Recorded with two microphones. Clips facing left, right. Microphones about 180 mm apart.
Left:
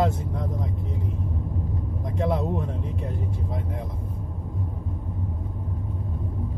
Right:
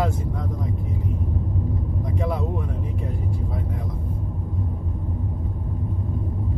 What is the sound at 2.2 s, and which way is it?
Speech, 25° left (ahead or behind).